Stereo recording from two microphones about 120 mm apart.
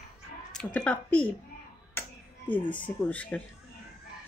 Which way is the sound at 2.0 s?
15° left (ahead or behind).